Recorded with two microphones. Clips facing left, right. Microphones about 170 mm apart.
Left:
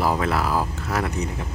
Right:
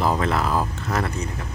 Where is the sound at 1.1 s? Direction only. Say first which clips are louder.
Left 2 dB; 20° left (ahead or behind).